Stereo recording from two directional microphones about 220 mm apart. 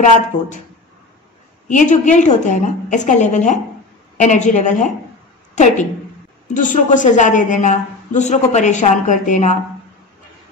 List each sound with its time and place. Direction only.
0.3 s speech: 20° left (ahead or behind)
1.7 s a woman's voice: 35° left (ahead or behind)